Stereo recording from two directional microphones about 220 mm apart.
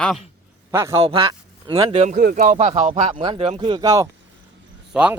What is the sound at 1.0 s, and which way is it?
Speech, 25° right (ahead or behind).